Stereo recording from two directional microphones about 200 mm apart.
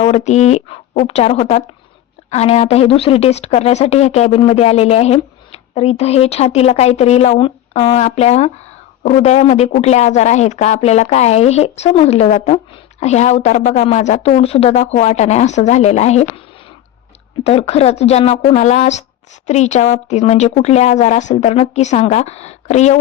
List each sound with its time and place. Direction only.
0.0 s speech: 35° left (ahead or behind)